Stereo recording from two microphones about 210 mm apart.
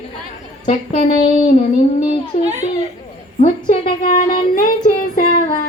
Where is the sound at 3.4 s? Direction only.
20° left (ahead or behind).